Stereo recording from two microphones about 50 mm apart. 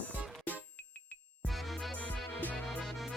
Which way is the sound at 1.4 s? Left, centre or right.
Centre.